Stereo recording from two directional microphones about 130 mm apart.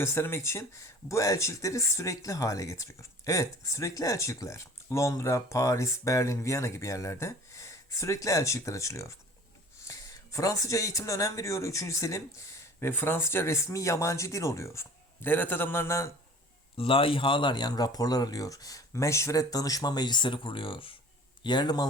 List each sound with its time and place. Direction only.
0.0 s speech: 20° left (ahead or behind)
16.7 s speech: 45° left (ahead or behind)